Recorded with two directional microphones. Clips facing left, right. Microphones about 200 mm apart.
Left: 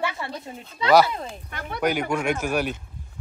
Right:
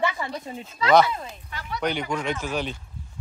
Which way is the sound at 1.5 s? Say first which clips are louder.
Right 2 dB; 55° left (ahead or behind).